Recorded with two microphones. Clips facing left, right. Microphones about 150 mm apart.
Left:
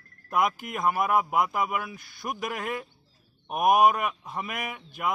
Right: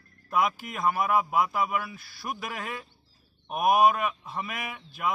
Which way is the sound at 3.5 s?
Centre (ahead or behind).